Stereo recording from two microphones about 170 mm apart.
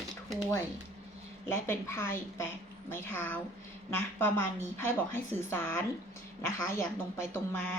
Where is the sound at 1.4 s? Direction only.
15° left (ahead or behind).